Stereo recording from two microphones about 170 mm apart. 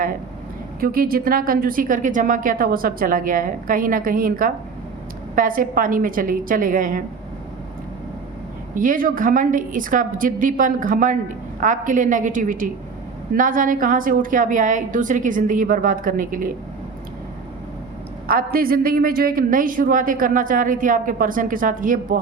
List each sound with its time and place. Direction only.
0.8 s a man's voice: 60° right (ahead or behind)
8.7 s a man's voice: 55° right (ahead or behind)
18.3 s a man's voice: 60° right (ahead or behind)